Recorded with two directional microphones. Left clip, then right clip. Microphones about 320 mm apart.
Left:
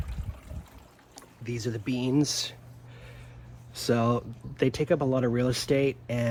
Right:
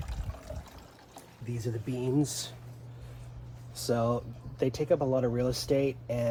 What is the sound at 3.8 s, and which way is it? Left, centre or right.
Speech, left.